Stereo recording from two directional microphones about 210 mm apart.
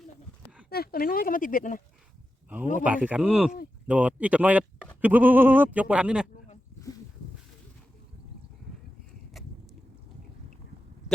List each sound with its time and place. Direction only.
0.7 s speech: 45° left (ahead or behind)
2.8 s speech: 5° right (ahead or behind)